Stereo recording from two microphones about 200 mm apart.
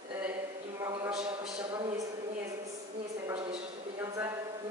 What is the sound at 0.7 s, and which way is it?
A man's voice, 15° right (ahead or behind).